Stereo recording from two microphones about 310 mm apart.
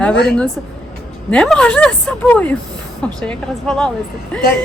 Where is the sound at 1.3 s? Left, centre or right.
Centre.